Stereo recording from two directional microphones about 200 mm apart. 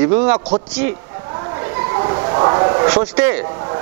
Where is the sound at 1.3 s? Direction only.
20° right (ahead or behind).